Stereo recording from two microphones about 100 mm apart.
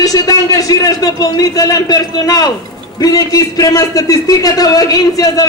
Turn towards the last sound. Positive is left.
turn(degrees=35)  # may be behind; listen again after turning